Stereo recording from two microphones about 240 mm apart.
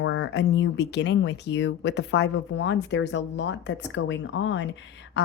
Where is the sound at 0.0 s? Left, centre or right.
Left.